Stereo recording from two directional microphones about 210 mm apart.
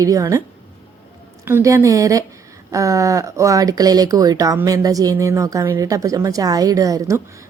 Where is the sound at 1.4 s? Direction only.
10° right (ahead or behind).